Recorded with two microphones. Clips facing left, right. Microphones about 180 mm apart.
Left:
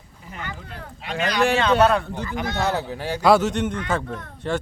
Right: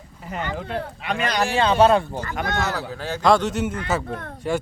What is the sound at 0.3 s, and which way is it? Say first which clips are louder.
Speech: right 8 dB; 80° right.